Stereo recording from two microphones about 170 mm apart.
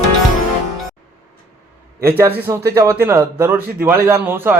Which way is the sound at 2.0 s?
15° right (ahead or behind).